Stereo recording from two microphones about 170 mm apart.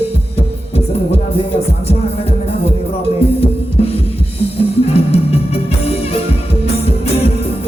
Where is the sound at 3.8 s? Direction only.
35° left (ahead or behind).